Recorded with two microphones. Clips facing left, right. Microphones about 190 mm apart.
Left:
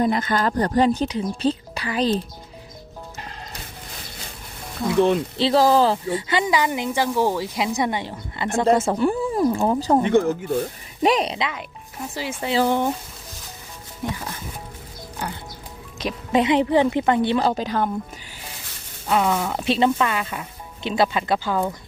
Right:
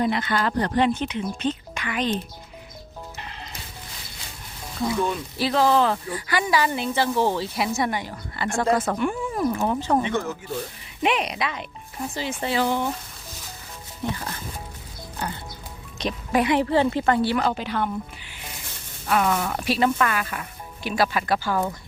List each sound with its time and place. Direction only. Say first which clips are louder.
0.0 s speech: left 3 dB; 40° left (ahead or behind)
4.9 s speech: left 11 dB; 70° left (ahead or behind)
5.4 s speech: left 2 dB; 30° left (ahead or behind)
10.0 s speech: left 8 dB; 55° left (ahead or behind)
11.0 s speech: left 4 dB; 35° left (ahead or behind)
12.1 s speech: left 1 dB; 10° left (ahead or behind)
12.6 s speech: left 5 dB; 55° left (ahead or behind)
14.0 s speech: even; 10° left (ahead or behind)
15.2 s music: even; 10° left (ahead or behind)
16.3 s speech: left 3 dB; 20° left (ahead or behind)
17.4 s speech: left 3 dB; 35° left (ahead or behind)
19.0 s speech: left 2 dB; 20° left (ahead or behind)